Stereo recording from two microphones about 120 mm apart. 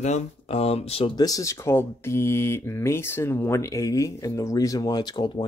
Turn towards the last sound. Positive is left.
turn(degrees=40)  # may be behind; listen again after turning